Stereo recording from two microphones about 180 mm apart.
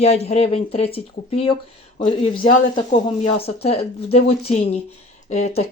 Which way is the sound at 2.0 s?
30° left (ahead or behind).